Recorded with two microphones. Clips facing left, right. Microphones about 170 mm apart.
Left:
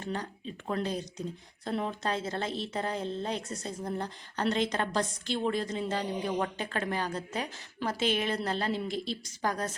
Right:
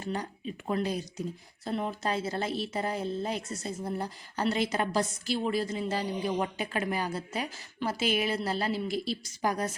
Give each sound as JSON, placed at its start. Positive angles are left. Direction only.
{"t": 0.0, "sound": "speech", "side_deg": -10}